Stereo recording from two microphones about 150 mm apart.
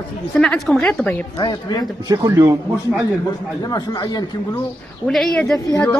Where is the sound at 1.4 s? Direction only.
30° left (ahead or behind).